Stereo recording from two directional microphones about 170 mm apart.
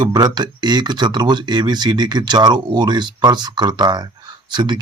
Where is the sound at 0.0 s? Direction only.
25° right (ahead or behind).